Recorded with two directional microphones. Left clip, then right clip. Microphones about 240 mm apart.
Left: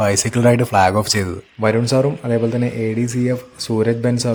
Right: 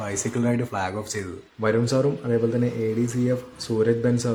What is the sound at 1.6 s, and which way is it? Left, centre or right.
Speech, left.